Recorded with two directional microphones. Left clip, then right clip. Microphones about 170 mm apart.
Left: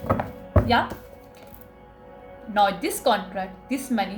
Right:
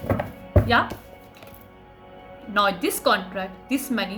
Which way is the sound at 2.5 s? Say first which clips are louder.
Even; 35° right (ahead or behind).